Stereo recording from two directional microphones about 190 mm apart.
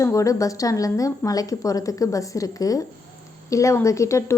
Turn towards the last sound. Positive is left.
turn(degrees=15)  # may be behind; listen again after turning